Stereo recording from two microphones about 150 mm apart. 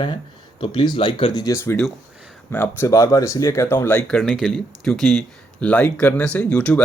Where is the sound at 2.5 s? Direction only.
15° left (ahead or behind).